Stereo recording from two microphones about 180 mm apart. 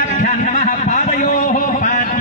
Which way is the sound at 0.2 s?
40° left (ahead or behind).